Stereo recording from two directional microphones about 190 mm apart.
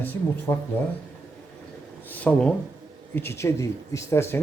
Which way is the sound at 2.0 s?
10° left (ahead or behind).